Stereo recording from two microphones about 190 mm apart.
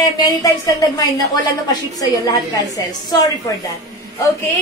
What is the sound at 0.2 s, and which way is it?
A woman's voice, 20° left (ahead or behind).